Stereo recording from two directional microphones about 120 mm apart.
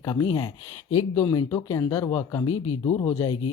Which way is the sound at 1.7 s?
25° left (ahead or behind).